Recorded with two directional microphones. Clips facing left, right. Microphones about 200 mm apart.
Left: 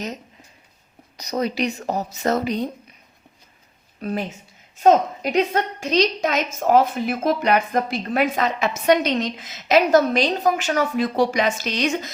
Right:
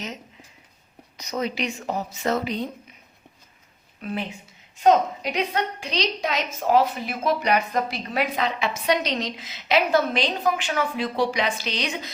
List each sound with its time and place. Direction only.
1.1 s a woman's voice: 35° left (ahead or behind)
4.0 s a woman's voice: 40° left (ahead or behind)